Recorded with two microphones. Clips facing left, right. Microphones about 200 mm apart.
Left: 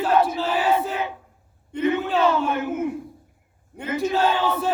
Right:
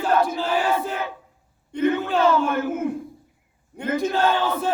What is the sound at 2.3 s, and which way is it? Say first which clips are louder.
Speech: right 2 dB; 50° right (ahead or behind).